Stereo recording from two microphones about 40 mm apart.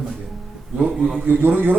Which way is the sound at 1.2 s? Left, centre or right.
Right.